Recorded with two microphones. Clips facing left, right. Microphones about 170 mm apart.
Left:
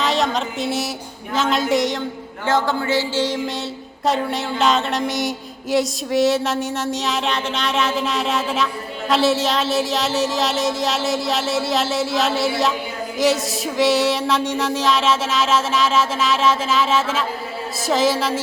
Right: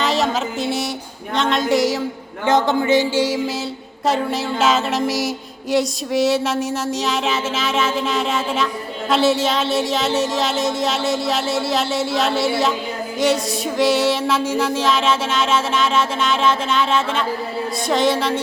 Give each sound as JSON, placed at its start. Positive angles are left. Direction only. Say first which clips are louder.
{"t": 0.0, "sound": "a sound", "louder": "right 1 dB", "side_deg": 0}
{"t": 1.4, "sound": "music", "louder": "right 1 dB", "side_deg": 0}
{"t": 2.5, "sound": "music", "louder": "right 4 dB", "side_deg": -20}